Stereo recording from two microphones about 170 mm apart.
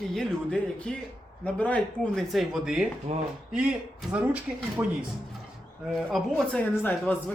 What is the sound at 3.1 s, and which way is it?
Speech, 40° right (ahead or behind).